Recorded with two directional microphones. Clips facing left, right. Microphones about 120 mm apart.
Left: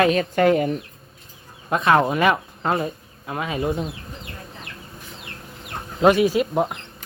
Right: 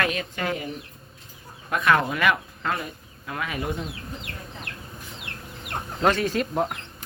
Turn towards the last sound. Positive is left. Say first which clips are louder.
# left 4 dB
turn(degrees=10)  # may be behind; listen again after turning